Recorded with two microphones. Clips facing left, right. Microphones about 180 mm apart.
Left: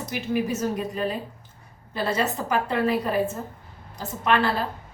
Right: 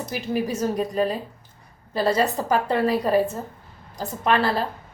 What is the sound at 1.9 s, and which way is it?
A woman's voice, 35° right (ahead or behind).